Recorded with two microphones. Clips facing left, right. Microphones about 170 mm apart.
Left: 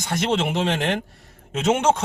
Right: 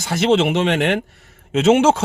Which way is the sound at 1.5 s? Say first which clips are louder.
Right 7 dB; 90° right.